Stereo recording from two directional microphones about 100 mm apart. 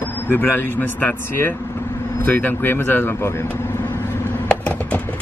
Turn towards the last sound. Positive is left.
turn(degrees=10)  # may be behind; listen again after turning